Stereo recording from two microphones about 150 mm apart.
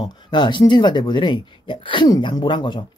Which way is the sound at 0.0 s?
30° left (ahead or behind).